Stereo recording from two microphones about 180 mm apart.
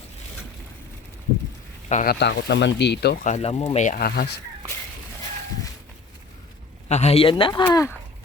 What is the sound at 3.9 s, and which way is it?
Speech, 60° left (ahead or behind).